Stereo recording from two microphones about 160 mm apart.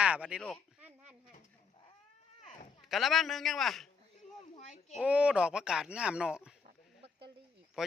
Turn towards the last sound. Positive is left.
turn(degrees=-5)  # may be behind; listen again after turning